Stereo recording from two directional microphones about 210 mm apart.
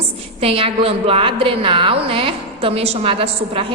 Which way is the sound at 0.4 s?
25° right (ahead or behind).